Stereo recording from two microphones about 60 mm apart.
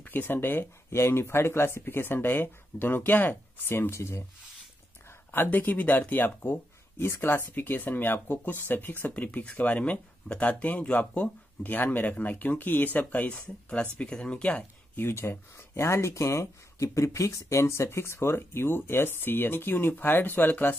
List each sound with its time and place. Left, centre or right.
0.0 s speech: left
5.3 s speech: left; by 14.6 s centre
15.0 s speech: left